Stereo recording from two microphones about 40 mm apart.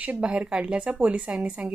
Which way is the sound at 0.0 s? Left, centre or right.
Right.